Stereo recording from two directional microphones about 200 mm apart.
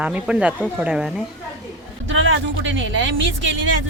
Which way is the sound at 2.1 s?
70° right (ahead or behind).